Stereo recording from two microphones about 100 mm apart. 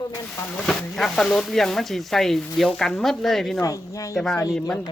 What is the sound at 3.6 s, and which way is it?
Speech, 35° left (ahead or behind).